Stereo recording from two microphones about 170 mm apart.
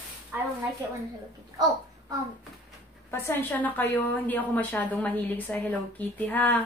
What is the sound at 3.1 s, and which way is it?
A woman's voice, 15° left (ahead or behind).